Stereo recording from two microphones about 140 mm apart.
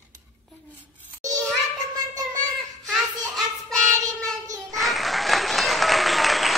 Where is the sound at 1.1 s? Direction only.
25° right (ahead or behind).